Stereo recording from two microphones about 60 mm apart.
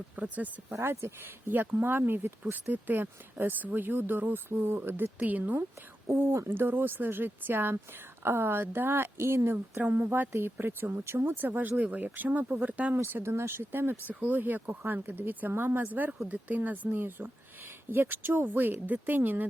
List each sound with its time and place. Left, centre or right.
0.2 s speech: right
0.7 s speech: right
13.1 s speech: right